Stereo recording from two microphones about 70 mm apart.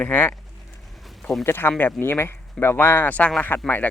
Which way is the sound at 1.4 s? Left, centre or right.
Left.